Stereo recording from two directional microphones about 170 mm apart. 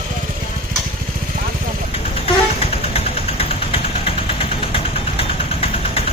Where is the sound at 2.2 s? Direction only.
35° left (ahead or behind).